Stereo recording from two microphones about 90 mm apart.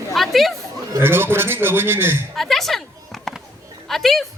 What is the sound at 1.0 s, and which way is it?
A man's voice, 25° right (ahead or behind).